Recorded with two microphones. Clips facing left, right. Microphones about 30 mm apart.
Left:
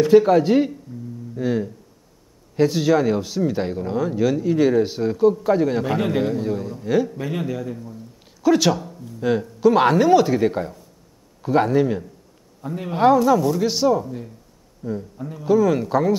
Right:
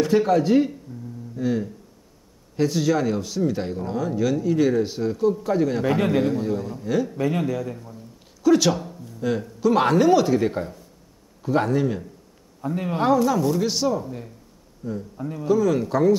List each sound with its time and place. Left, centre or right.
0.0 s a man's voice: centre
0.3 s speech: centre
0.9 s a sound: centre
1.3 s a man's voice: centre
8.4 s speech: centre
8.7 s music: centre
9.2 s speech: centre
12.6 s a man's voice: centre
12.9 s speech: centre
14.0 s speech: centre
14.8 s a man's voice: centre
15.1 s speech: centre
15.4 s speech: centre